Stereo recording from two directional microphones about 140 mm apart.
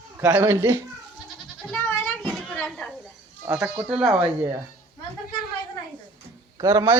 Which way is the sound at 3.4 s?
15° right (ahead or behind).